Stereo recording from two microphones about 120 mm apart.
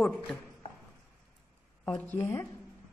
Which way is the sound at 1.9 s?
15° left (ahead or behind).